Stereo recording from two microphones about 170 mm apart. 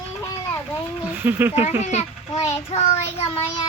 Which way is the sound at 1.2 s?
10° right (ahead or behind).